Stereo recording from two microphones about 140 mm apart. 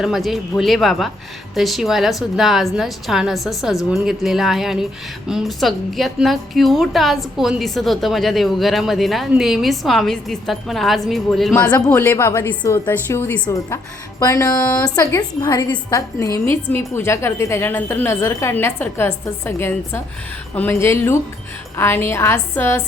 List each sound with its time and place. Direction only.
0.0 s a woman's voice: centre (ahead or behind)
11.9 s a woman's voice: 15° left (ahead or behind)